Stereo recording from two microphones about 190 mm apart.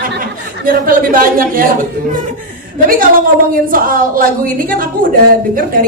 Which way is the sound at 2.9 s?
50° right (ahead or behind).